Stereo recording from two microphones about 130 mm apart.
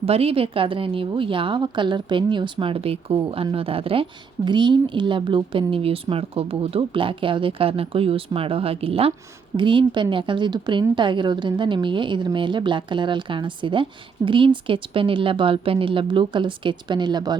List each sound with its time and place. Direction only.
0.0 s a woman's voice: 50° right (ahead or behind); by 17.3 s 35° right (ahead or behind)